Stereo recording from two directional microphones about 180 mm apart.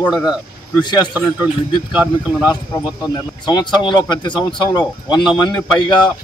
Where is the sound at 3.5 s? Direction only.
25° left (ahead or behind).